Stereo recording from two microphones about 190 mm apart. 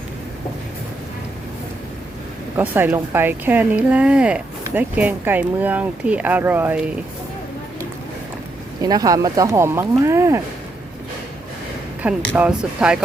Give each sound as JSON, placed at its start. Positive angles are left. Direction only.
{"t": 2.6, "sound": "a woman's voice", "side_deg": -10}
{"t": 8.8, "sound": "a woman's voice", "side_deg": -20}
{"t": 12.3, "sound": "speech", "side_deg": -5}